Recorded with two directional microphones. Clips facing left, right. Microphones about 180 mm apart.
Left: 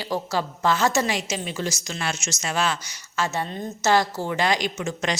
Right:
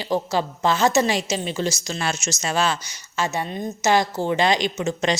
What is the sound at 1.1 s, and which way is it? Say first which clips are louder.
A woman's voice: right 4 dB; 30° right (ahead or behind).